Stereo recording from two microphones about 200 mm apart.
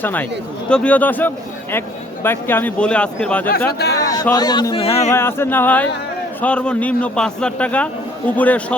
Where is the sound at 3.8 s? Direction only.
15° left (ahead or behind).